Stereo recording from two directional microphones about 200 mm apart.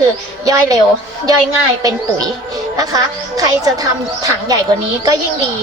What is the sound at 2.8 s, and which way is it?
Speech, 20° right (ahead or behind).